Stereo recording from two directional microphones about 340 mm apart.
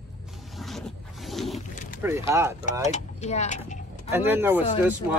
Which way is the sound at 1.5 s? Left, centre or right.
Left.